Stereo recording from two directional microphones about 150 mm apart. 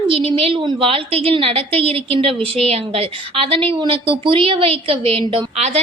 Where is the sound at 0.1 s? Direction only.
40° right (ahead or behind).